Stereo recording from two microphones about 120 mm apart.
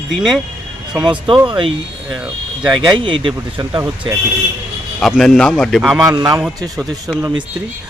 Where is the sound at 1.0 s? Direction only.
40° right (ahead or behind).